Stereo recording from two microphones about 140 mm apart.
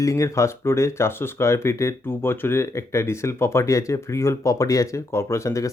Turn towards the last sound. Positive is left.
turn(degrees=20)  # may be behind; listen again after turning